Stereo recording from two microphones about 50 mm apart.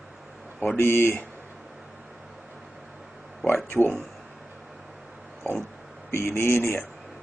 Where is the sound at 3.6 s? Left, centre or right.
Left.